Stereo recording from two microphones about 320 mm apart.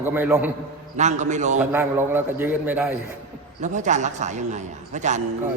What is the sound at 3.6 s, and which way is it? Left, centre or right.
Speech, right.